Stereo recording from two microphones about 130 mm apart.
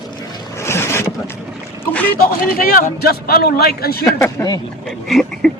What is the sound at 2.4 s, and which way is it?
Speech, 90° left.